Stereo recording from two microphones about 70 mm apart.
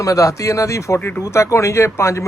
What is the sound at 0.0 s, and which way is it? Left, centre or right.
Speech, left.